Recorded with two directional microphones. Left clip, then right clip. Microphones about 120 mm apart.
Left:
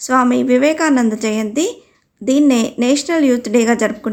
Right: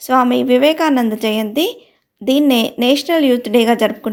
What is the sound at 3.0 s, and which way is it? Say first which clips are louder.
Speech: right 1 dB; 10° right (ahead or behind).